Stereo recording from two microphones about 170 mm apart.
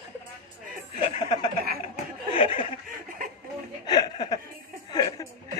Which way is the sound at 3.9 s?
25° left (ahead or behind).